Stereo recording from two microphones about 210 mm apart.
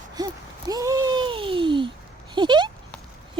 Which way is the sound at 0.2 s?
20° right (ahead or behind).